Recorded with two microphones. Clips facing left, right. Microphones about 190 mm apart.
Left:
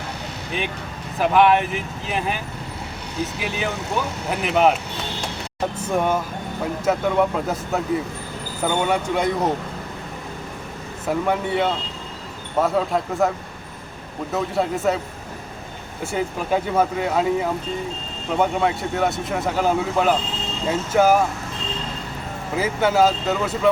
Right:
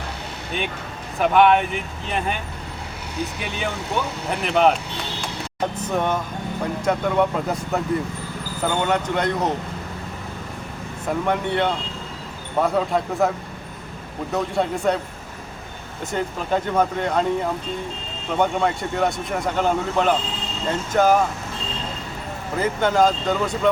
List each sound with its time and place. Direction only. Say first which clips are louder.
0.5 s speech: even; centre (ahead or behind)
3.4 s speech: left 2 dB; centre (ahead or behind)
11.0 s speech: left 1 dB; 5° left (ahead or behind)
14.3 s speech: even; 5° left (ahead or behind)
16.1 s speech: left 1 dB; 5° left (ahead or behind)
22.5 s speech: left 1 dB; 5° left (ahead or behind)